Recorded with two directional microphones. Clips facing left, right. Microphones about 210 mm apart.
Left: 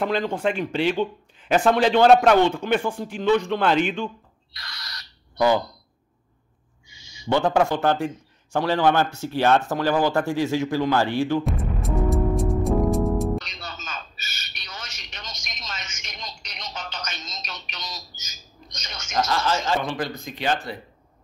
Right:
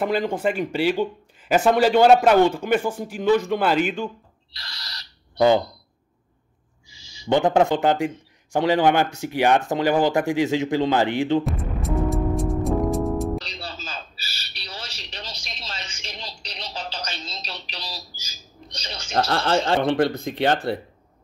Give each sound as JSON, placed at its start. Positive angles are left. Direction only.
{"t": 0.0, "sound": "speech", "side_deg": -5}
{"t": 4.6, "sound": "speech", "side_deg": -30}
{"t": 6.9, "sound": "a sound", "side_deg": -30}
{"t": 7.3, "sound": "a man's voice", "side_deg": -20}
{"t": 11.8, "sound": "music", "side_deg": 0}
{"t": 13.4, "sound": "a sound", "side_deg": -30}
{"t": 19.3, "sound": "speech", "side_deg": -60}